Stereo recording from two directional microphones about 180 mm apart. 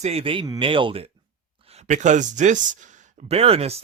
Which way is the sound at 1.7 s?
40° right (ahead or behind).